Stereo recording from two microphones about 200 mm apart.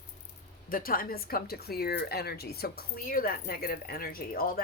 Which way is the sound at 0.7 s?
45° left (ahead or behind).